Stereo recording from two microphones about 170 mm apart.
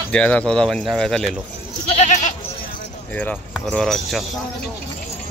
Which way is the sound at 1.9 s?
45° left (ahead or behind).